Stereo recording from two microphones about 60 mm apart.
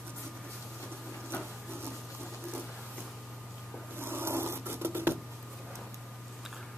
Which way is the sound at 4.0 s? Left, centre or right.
Right.